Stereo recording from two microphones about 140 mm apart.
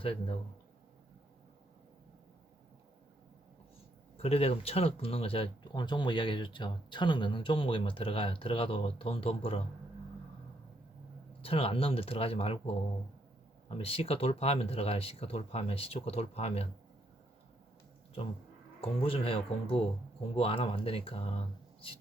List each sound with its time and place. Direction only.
0.0 s speech: 40° left (ahead or behind)
4.2 s speech: 45° left (ahead or behind)
11.4 s speech: 45° left (ahead or behind)
18.8 s speech: 40° left (ahead or behind)